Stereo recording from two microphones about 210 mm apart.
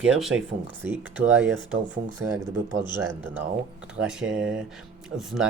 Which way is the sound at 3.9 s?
5° right (ahead or behind).